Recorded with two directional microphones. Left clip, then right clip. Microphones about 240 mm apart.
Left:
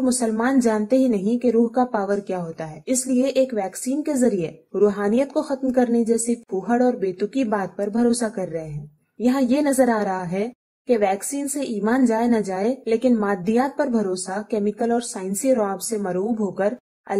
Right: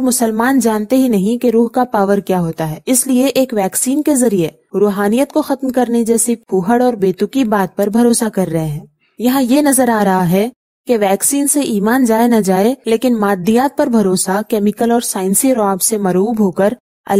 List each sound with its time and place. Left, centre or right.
0.0 s a woman's voice: right